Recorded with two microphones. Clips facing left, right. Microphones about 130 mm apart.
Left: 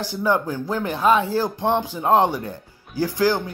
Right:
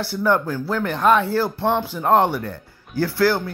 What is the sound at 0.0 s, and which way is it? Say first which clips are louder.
Speech: right 2 dB; 15° left (ahead or behind).